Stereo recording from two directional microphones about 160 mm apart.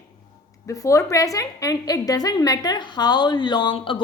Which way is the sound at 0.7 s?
20° left (ahead or behind).